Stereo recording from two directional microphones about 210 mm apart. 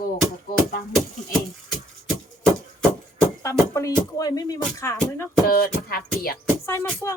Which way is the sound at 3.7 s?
15° left (ahead or behind).